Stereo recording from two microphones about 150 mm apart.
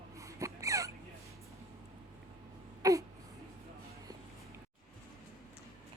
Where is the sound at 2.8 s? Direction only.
20° right (ahead or behind).